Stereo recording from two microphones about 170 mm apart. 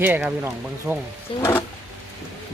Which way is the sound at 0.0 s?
10° right (ahead or behind).